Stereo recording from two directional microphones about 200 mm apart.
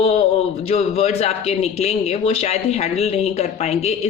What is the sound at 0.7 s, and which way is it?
A man's voice, 30° left (ahead or behind).